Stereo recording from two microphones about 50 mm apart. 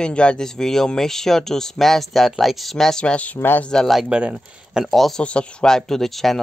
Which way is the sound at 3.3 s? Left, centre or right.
Left.